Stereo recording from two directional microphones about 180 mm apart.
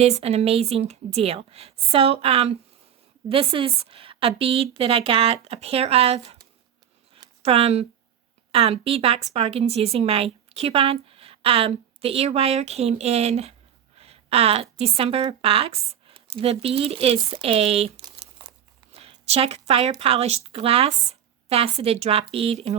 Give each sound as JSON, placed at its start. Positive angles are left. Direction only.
{"t": 0.0, "sound": "a woman's voice", "side_deg": -35}
{"t": 7.1, "sound": "a sound", "side_deg": -30}
{"t": 8.5, "sound": "a woman's voice", "side_deg": -35}